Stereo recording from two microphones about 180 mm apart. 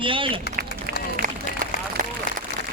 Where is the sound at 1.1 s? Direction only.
50° right (ahead or behind).